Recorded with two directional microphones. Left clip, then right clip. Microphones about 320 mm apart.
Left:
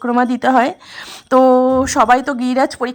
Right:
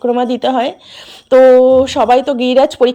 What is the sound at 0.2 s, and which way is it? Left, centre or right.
Speech, left.